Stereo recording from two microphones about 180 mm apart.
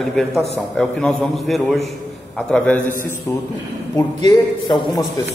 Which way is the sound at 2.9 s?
50° right (ahead or behind).